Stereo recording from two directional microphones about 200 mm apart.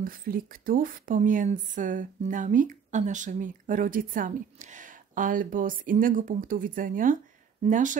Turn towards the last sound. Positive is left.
turn(degrees=-40)  # may be behind; listen again after turning